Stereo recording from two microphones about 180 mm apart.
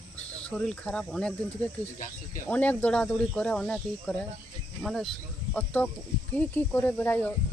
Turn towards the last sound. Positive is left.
turn(degrees=10)  # may be behind; listen again after turning